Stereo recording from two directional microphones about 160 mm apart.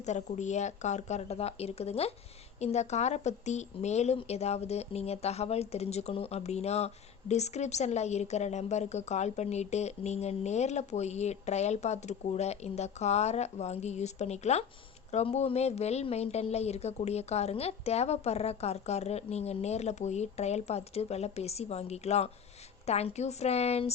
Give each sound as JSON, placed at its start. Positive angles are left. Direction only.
{"t": 0.0, "sound": "a woman's voice", "side_deg": 45}